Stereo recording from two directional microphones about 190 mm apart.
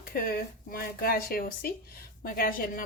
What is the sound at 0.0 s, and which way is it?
Speech, 50° left (ahead or behind).